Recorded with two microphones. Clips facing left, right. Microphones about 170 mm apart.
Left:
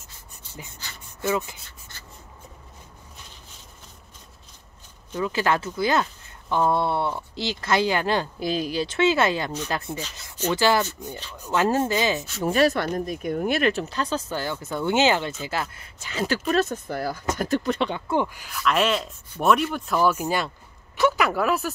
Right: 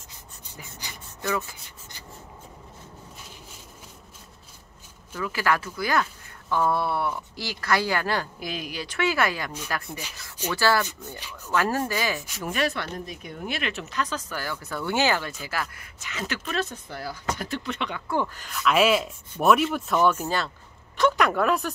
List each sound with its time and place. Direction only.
1.2 s speech: 20° left (ahead or behind)
5.1 s speech: 25° left (ahead or behind)
12.4 s speech: 35° left (ahead or behind); by 18.5 s 15° left (ahead or behind)
18.5 s speech: centre (ahead or behind)
20.2 s speech: 15° left (ahead or behind)